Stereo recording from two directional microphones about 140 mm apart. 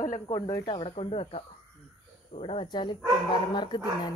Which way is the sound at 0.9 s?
45° left (ahead or behind).